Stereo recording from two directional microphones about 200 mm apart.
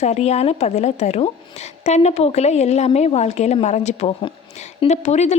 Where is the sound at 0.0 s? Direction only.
35° left (ahead or behind).